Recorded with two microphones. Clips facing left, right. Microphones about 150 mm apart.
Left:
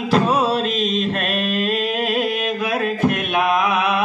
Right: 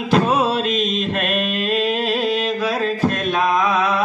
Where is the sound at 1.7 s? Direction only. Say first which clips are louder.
Right 2 dB; 45° left (ahead or behind).